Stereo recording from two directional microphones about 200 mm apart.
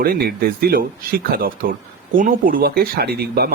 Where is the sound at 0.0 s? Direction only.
50° right (ahead or behind).